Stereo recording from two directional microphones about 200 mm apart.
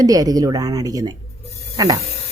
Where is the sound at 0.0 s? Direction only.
20° right (ahead or behind).